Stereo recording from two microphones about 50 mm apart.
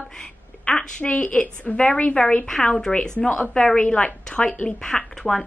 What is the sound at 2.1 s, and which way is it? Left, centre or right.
A woman's voice, centre.